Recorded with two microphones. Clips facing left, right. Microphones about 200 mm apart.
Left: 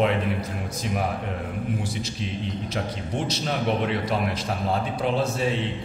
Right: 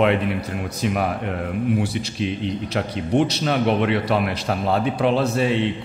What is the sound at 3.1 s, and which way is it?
A man's voice, 65° right (ahead or behind).